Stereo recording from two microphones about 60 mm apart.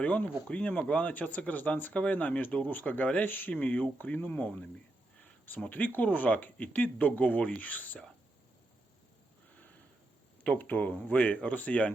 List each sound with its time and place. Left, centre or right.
0.0 s speech: left
10.6 s speech: left